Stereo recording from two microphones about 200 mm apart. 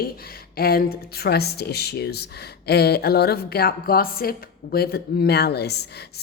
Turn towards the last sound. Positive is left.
turn(degrees=55)  # may be behind; listen again after turning